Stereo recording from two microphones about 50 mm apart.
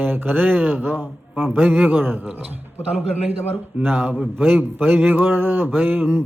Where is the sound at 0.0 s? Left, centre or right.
Right.